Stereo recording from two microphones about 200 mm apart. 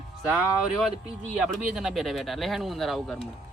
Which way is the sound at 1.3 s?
5° right (ahead or behind).